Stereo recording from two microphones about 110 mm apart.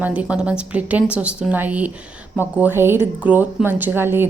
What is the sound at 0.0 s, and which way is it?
A woman's voice, 10° right (ahead or behind).